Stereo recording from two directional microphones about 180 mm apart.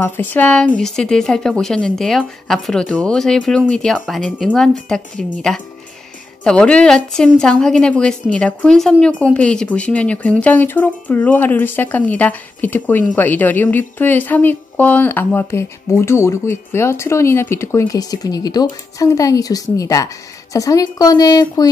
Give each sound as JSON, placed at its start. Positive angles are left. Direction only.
{"t": 0.0, "sound": "a woman's voice", "side_deg": 10}